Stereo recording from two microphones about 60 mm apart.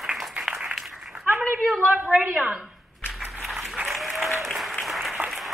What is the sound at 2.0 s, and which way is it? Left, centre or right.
Speech, right.